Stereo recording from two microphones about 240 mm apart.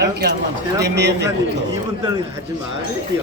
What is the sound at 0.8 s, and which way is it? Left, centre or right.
Speech, right.